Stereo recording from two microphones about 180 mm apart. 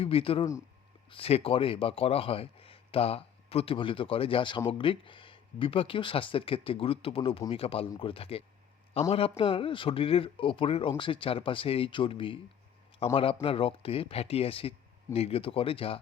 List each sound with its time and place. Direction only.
0.0 s a man's voice: 30° left (ahead or behind)